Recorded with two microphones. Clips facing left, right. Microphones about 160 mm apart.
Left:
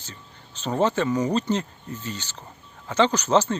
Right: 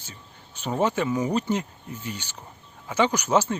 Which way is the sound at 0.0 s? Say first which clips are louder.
Left 2 dB; 10° right (ahead or behind).